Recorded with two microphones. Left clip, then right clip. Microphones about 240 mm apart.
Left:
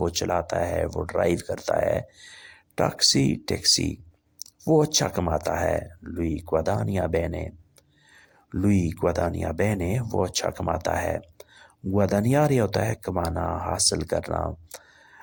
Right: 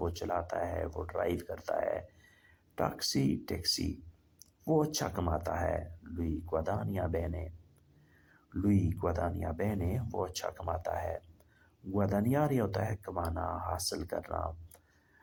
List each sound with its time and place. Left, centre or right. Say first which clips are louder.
0.0 s speech: left 10 dB; left